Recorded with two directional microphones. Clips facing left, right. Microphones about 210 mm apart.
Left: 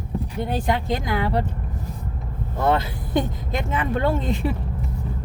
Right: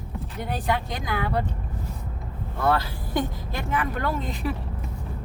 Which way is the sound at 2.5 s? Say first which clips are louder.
Left 3 dB; 20° left (ahead or behind).